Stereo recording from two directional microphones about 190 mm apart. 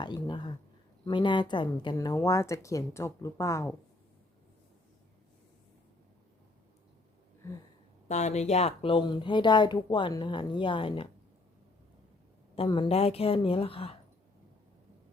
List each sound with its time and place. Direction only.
0.0 s speech: 25° left (ahead or behind)
8.0 s speech: 35° left (ahead or behind)
12.5 s speech: 25° left (ahead or behind)